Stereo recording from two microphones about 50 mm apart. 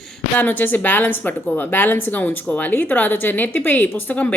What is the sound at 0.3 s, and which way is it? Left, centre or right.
A woman's voice, left.